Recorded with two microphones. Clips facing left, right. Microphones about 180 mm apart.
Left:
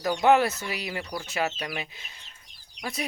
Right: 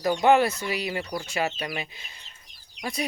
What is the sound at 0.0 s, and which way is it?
Speech, 5° right (ahead or behind).